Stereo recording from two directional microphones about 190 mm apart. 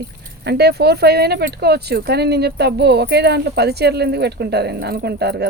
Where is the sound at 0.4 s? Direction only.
60° right (ahead or behind).